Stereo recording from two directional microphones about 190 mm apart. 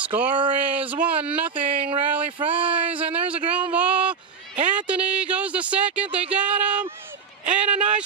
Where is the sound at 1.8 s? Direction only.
30° right (ahead or behind).